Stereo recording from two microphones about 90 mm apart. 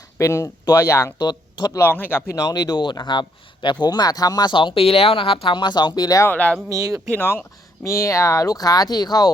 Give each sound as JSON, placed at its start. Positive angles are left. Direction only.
{"t": 0.2, "sound": "speech", "side_deg": 35}
{"t": 1.2, "sound": "speech", "side_deg": 55}
{"t": 1.7, "sound": "a man's voice", "side_deg": 25}
{"t": 2.3, "sound": "speech", "side_deg": 45}
{"t": 6.2, "sound": "speech", "side_deg": 15}
{"t": 6.7, "sound": "speech", "side_deg": -40}
{"t": 7.1, "sound": "a man's voice", "side_deg": 20}
{"t": 7.9, "sound": "speech", "side_deg": 35}